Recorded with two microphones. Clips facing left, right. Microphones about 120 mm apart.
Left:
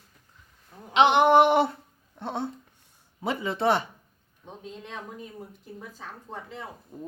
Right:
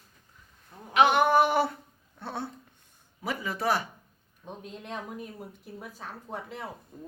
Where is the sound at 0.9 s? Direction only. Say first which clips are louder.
Left 3 dB; 25° left (ahead or behind).